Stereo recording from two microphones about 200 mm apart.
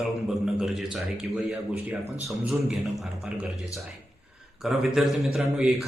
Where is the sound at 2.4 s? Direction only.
Centre (ahead or behind).